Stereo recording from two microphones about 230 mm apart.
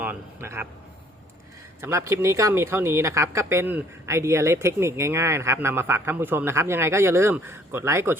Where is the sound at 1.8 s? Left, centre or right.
Centre.